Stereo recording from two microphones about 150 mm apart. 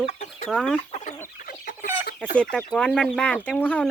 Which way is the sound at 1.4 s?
70° left (ahead or behind).